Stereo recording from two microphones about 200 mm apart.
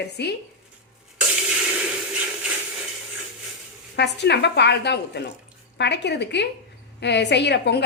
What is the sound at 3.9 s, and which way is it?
A woman's voice, 55° left (ahead or behind).